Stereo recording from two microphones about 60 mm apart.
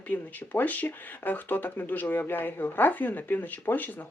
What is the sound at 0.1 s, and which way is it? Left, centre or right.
Speech, left.